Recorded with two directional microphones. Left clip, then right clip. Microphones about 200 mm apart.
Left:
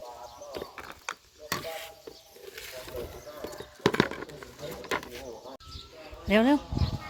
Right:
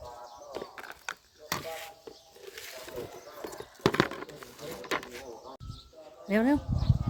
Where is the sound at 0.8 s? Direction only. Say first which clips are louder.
Left 1 dB; 45° right (ahead or behind).